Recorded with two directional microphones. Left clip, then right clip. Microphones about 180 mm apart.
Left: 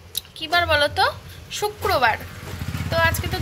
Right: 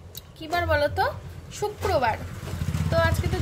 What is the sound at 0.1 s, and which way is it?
A woman's voice, 5° right (ahead or behind).